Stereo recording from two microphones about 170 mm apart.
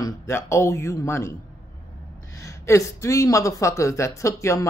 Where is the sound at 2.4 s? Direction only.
15° left (ahead or behind).